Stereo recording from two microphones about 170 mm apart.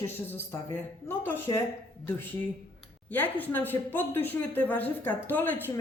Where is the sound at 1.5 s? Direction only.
30° left (ahead or behind).